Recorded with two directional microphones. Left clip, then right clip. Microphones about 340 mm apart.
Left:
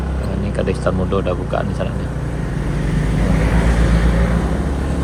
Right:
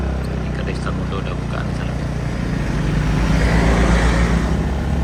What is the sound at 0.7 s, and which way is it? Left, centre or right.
Vehicle, centre.